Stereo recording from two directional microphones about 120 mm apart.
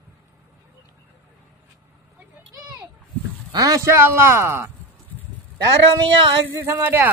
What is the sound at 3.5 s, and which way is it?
A man's voice, 30° right (ahead or behind).